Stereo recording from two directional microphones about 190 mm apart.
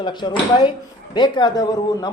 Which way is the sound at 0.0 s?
25° left (ahead or behind).